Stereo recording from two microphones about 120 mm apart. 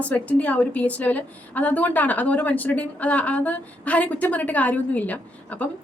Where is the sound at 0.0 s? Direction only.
10° left (ahead or behind).